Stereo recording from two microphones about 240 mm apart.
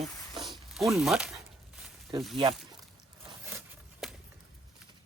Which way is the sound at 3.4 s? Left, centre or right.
Centre.